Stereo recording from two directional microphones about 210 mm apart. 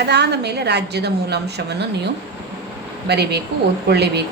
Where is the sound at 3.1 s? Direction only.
50° right (ahead or behind).